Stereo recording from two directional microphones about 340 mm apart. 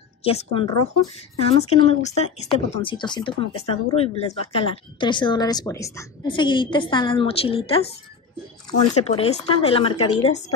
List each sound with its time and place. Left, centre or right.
0.2 s speech: centre